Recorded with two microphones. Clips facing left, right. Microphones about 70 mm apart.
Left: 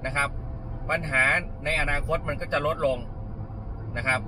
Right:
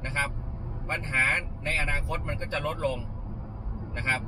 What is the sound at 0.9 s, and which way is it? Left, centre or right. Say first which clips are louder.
Speech: left 4 dB; left.